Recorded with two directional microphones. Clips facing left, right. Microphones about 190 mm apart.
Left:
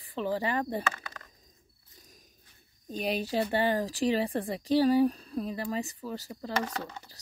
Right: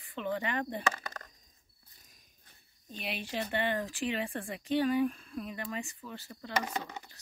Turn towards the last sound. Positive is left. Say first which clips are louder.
# left 1 dB
turn(degrees=-15)  # may be behind; listen again after turning